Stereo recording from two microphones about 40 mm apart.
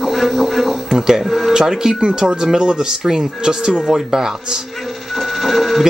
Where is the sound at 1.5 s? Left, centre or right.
Centre.